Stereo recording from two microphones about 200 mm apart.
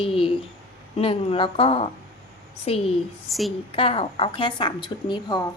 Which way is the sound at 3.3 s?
Centre (ahead or behind).